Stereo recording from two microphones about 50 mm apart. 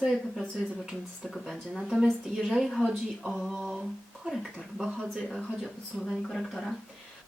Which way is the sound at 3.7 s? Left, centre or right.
Centre.